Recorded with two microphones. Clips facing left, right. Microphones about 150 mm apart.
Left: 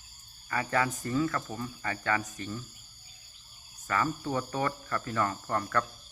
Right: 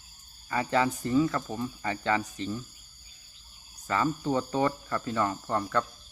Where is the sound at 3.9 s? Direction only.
20° right (ahead or behind).